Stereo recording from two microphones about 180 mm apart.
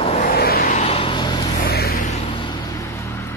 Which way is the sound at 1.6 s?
60° left (ahead or behind).